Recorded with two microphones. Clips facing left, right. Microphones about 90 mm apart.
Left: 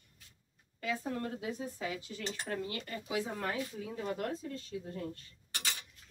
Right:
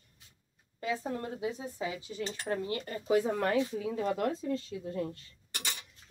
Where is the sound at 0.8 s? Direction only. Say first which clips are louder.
Right 2 dB; 25° right (ahead or behind).